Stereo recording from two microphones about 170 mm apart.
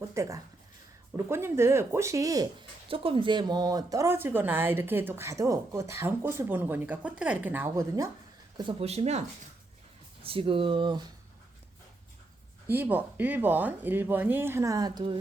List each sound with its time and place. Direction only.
0.1 s speech: 15° right (ahead or behind)
2.9 s speech: 30° right (ahead or behind)
8.5 s speech: 30° right (ahead or behind)
10.2 s speech: 30° right (ahead or behind)
12.6 s speech: 10° right (ahead or behind); by 15.2 s 30° right (ahead or behind)